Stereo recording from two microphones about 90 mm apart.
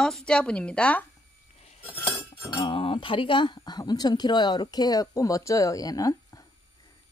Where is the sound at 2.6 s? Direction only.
80° left; by 3.6 s 65° left (ahead or behind).